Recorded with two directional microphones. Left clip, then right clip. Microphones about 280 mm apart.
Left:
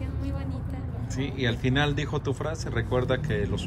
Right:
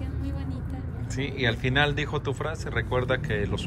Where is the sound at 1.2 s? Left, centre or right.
Centre.